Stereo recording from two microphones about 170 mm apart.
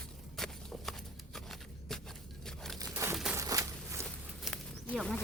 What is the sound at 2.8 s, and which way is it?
Crumpling, 15° right (ahead or behind).